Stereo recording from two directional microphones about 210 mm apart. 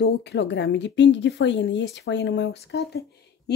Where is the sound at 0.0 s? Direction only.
55° left (ahead or behind).